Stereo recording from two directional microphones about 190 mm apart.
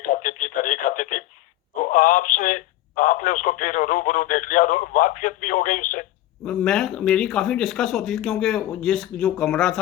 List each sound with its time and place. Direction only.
0.0 s radio: 45° left (ahead or behind)
1.8 s telephone: 45° left (ahead or behind)
6.4 s speech: 5° left (ahead or behind)